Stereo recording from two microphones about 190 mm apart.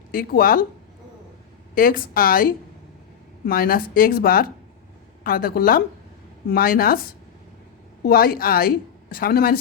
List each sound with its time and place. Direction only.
0.1 s a woman's voice: 50° left (ahead or behind)
1.7 s a woman's voice: 50° left (ahead or behind)
8.0 s a woman's voice: 50° left (ahead or behind)